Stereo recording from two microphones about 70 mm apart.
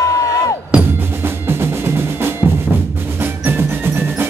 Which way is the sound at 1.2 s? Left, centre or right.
Right.